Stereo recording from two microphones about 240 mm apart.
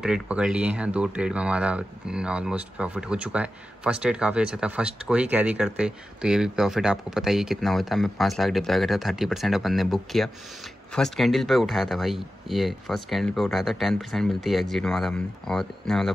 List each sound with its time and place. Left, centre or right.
0.0 s speech: centre